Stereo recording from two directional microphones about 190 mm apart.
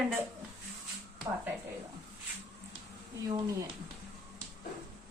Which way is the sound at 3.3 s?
20° right (ahead or behind).